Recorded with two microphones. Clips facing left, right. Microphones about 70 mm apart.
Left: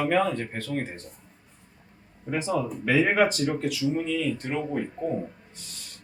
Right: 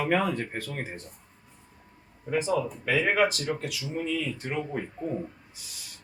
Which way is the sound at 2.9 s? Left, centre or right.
Centre.